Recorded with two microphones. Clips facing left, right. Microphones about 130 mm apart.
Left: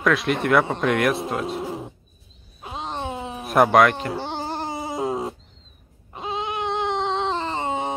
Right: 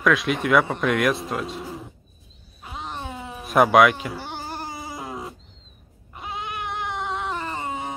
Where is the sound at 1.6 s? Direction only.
20° left (ahead or behind).